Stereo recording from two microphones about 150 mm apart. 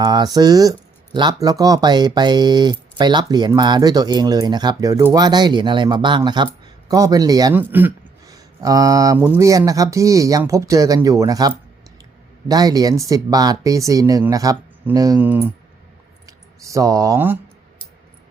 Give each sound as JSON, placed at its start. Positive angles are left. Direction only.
{"t": 0.0, "sound": "speech", "side_deg": -25}
{"t": 7.5, "sound": "speech", "side_deg": -15}
{"t": 8.3, "sound": "speech", "side_deg": -25}
{"t": 16.2, "sound": "speech", "side_deg": -20}